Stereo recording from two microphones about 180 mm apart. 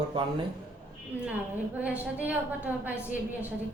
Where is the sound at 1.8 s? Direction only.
10° right (ahead or behind).